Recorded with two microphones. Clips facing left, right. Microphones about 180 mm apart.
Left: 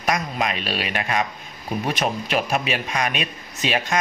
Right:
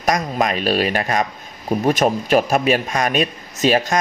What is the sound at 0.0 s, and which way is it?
Speech, 40° right (ahead or behind).